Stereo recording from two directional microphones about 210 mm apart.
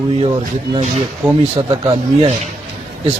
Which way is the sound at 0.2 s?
20° right (ahead or behind).